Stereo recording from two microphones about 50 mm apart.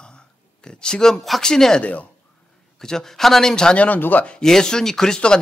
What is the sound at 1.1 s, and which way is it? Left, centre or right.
Speech, centre.